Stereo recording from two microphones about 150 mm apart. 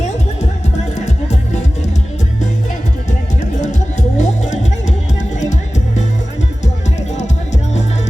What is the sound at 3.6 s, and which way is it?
Music, 50° left (ahead or behind).